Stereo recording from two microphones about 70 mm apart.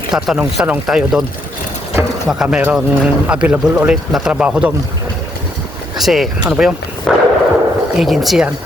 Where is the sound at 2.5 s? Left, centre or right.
Right.